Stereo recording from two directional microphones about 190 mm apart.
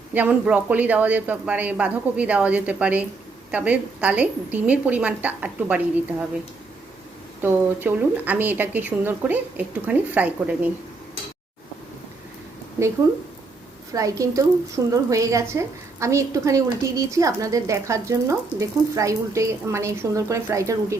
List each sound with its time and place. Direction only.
0.1 s a woman's voice: 10° right (ahead or behind)
7.4 s a woman's voice: 10° right (ahead or behind)
13.9 s a woman's voice: 15° right (ahead or behind)